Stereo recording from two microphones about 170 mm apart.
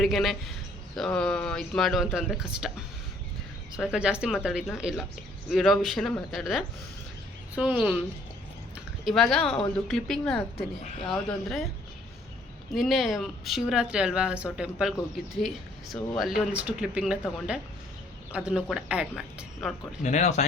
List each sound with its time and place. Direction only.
0.0 s a woman's voice: centre (ahead or behind)
3.8 s a woman's voice: 5° right (ahead or behind)
9.0 s a woman's voice: centre (ahead or behind)
12.7 s a woman's voice: centre (ahead or behind)
20.0 s speech: 45° left (ahead or behind)